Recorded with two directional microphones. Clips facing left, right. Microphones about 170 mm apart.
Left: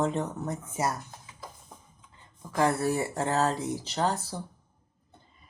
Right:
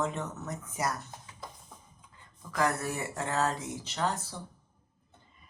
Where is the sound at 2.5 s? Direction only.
30° left (ahead or behind).